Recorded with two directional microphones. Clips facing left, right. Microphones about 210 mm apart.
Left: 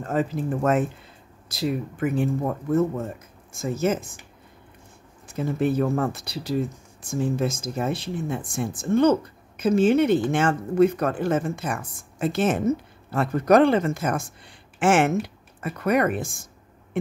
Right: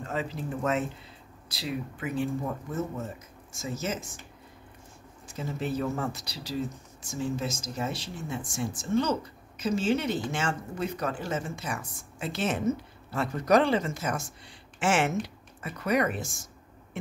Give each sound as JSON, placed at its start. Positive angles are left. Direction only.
{"t": 0.0, "sound": "speech", "side_deg": 50}
{"t": 5.2, "sound": "speech", "side_deg": 55}